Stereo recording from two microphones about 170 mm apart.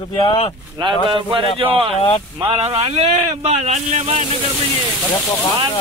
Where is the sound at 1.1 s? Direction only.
30° right (ahead or behind).